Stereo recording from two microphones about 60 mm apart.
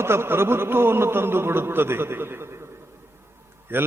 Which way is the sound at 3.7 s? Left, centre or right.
Right.